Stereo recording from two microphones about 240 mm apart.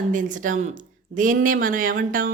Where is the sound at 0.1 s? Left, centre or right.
Right.